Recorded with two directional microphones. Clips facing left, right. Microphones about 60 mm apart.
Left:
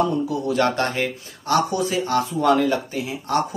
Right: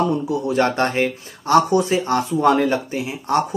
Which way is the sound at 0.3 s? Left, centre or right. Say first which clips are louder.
Right 2 dB; right.